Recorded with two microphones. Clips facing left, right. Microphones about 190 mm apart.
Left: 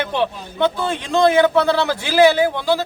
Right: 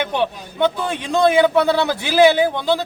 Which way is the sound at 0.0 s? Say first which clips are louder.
Even; 15° right (ahead or behind).